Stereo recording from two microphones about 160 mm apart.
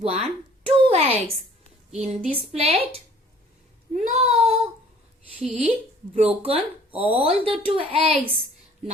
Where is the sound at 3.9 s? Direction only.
50° right (ahead or behind).